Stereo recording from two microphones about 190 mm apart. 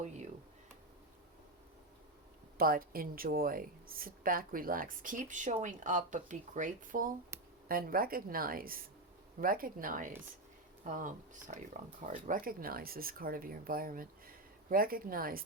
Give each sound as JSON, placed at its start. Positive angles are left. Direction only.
{"t": 2.6, "sound": "speech", "side_deg": -50}